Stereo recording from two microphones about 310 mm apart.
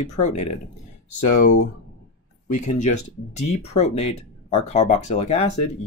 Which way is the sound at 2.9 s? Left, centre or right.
Left.